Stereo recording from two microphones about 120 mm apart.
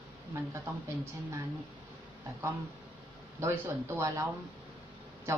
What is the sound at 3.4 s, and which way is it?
Speech, 20° right (ahead or behind).